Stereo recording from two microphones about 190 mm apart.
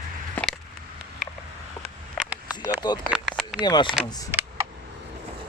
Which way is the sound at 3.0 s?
Centre (ahead or behind).